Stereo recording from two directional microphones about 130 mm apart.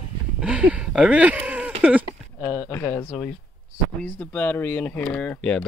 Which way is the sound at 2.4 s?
20° left (ahead or behind).